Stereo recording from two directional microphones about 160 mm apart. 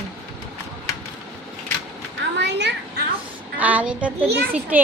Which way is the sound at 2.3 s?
90° right.